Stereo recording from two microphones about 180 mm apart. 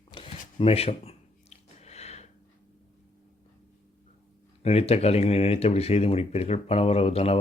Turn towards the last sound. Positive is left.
turn(degrees=35)  # may be behind; listen again after turning